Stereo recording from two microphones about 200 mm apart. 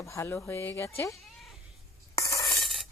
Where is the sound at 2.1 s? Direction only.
15° left (ahead or behind).